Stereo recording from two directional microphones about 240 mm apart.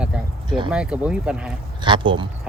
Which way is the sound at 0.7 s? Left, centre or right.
Centre.